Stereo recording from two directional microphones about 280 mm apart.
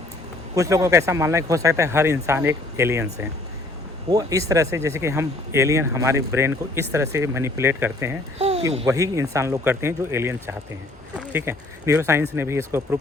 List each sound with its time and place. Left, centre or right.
0.5 s speech: centre
8.4 s a sound: right
8.7 s speech: centre